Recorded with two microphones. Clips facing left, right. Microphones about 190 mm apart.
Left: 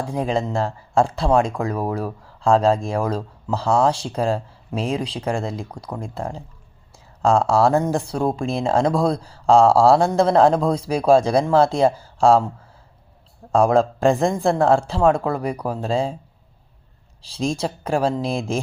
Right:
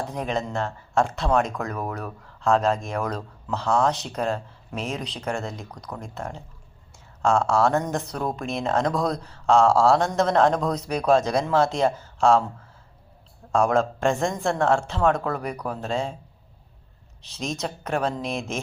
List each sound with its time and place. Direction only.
0.2 s speech: 30° left (ahead or behind)
13.5 s speech: 35° left (ahead or behind)
17.2 s speech: 30° left (ahead or behind)